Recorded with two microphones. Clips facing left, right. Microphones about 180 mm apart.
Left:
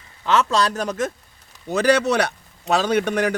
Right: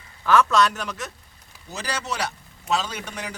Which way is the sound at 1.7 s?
65° left (ahead or behind).